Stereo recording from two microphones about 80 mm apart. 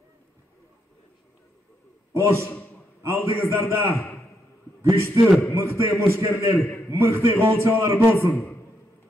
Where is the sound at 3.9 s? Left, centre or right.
Left.